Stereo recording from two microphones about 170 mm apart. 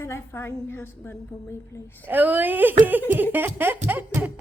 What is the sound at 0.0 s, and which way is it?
A woman's voice, 15° left (ahead or behind).